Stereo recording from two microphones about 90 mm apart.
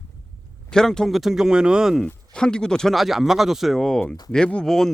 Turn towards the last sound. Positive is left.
turn(degrees=5)  # may be behind; listen again after turning